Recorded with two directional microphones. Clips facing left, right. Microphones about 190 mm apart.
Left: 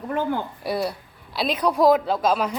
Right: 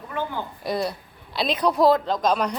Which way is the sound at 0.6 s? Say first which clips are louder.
Left 1 dB; 10° left (ahead or behind).